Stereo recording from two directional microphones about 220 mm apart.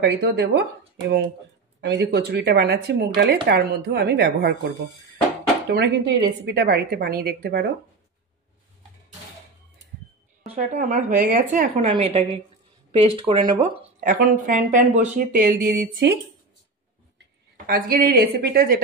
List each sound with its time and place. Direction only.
0.0 s a woman's voice: 50° right (ahead or behind)
10.4 s speech: 30° right (ahead or behind)
13.9 s speech: 40° right (ahead or behind)
17.6 s a woman's voice: 40° right (ahead or behind)